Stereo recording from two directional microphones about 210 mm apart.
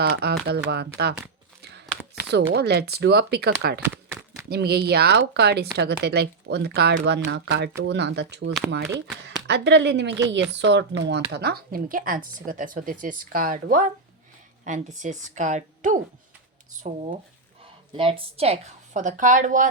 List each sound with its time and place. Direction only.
0.0 s speech: 50° right (ahead or behind)
2.3 s speech: 50° right (ahead or behind)
3.8 s a sound: 10° right (ahead or behind)
4.4 s speech: 50° right (ahead or behind)
17.9 s speech: 25° right (ahead or behind)